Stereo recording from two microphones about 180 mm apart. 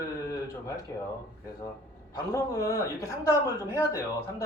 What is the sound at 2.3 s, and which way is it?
A man's voice, 15° left (ahead or behind).